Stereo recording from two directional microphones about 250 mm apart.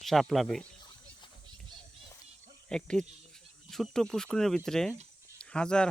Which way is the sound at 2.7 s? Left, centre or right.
Centre.